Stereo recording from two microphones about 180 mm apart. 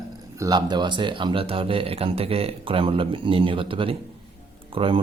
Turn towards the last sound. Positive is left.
turn(degrees=-30)  # may be behind; listen again after turning